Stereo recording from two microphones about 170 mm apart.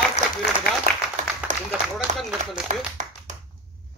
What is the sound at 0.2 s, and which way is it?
Applause, 40° left (ahead or behind).